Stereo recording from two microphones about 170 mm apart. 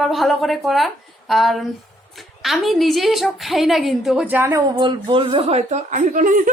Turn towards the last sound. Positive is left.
turn(degrees=-50)  # may be behind; listen again after turning